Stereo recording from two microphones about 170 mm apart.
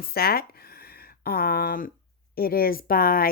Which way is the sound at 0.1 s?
65° left (ahead or behind).